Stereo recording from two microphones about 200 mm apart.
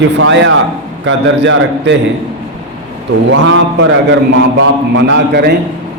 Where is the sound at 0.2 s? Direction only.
75° right (ahead or behind).